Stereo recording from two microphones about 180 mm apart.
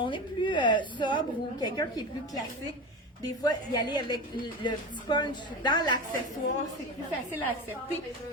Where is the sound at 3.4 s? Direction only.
20° left (ahead or behind).